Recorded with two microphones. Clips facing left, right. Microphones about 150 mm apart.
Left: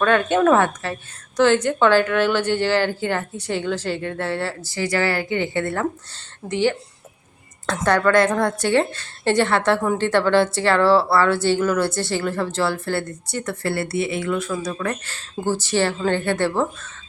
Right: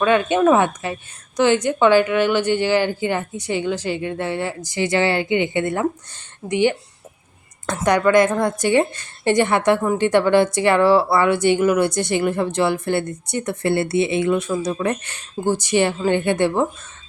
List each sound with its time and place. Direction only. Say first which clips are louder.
0.0 s speech: right 1 dB; 10° right (ahead or behind)